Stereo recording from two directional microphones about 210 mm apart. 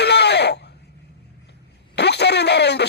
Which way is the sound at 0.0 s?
50° left (ahead or behind).